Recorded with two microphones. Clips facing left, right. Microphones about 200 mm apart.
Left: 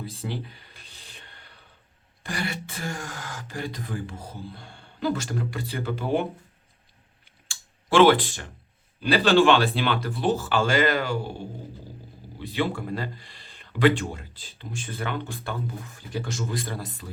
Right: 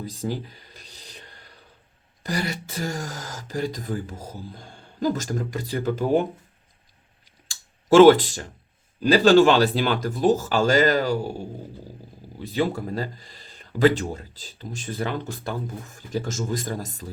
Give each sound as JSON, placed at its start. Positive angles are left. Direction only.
{"t": 0.0, "sound": "a sound", "side_deg": -40}
{"t": 2.2, "sound": "speech", "side_deg": -40}
{"t": 7.4, "sound": "computer keyboard", "side_deg": -40}
{"t": 9.0, "sound": "speech", "side_deg": -40}
{"t": 12.4, "sound": "speech", "side_deg": -40}